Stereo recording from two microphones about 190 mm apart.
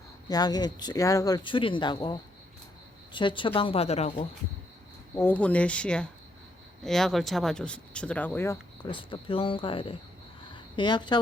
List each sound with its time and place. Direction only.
0.3 s speech: 20° left (ahead or behind)
5.1 s speech: 10° left (ahead or behind)
8.9 s speech: 25° left (ahead or behind)
10.5 s a sound: 25° left (ahead or behind)